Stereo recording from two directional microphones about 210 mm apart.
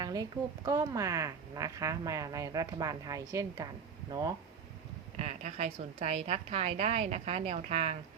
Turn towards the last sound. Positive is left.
turn(degrees=-30)  # may be behind; listen again after turning